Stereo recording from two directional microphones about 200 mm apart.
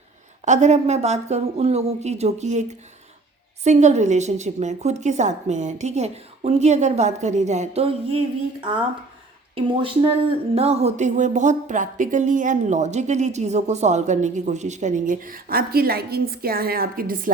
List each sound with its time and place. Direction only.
0.4 s speech: 35° right (ahead or behind)
9.6 s speech: 25° right (ahead or behind); by 17.3 s 45° right (ahead or behind)